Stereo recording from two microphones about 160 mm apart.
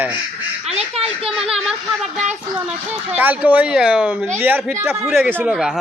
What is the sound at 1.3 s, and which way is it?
Speech, 5° right (ahead or behind).